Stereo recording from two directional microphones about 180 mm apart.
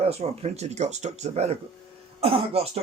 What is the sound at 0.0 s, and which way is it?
Speech, 35° right (ahead or behind).